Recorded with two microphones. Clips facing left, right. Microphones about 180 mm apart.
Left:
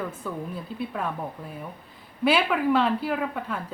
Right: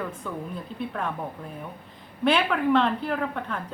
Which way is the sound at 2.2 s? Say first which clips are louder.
Even; 5° left (ahead or behind).